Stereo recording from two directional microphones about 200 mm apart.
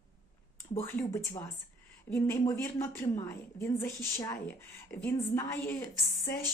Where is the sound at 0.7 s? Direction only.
15° left (ahead or behind).